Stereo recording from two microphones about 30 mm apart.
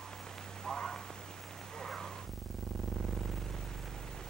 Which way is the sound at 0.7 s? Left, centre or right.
Centre.